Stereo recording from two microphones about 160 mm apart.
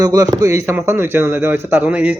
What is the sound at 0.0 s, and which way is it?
A man's voice, 20° right (ahead or behind).